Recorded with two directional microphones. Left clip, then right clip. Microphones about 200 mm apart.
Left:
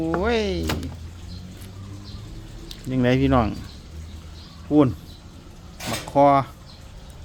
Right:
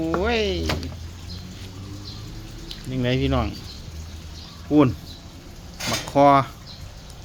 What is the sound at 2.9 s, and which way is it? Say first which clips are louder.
Speech: left 4 dB; 35° left (ahead or behind).